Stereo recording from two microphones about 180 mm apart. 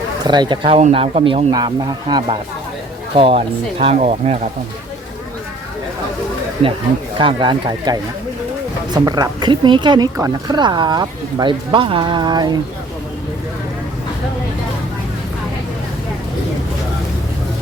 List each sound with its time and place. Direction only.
0.3 s speech: 25° right (ahead or behind)
7.2 s speech: 25° right (ahead or behind)